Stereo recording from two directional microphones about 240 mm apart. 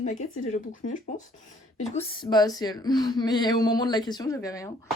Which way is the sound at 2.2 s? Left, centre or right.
Centre.